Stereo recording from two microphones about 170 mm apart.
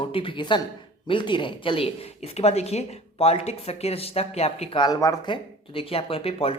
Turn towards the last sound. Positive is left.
turn(degrees=35)  # may be behind; listen again after turning